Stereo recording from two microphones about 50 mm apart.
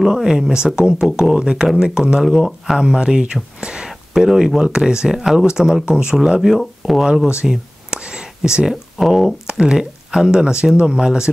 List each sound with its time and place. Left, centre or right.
0.1 s speech: centre
2.2 s speech: centre
3.6 s a sound: centre
4.6 s speech: centre
7.4 s whispering: centre
8.5 s speech: centre
9.5 s speech: centre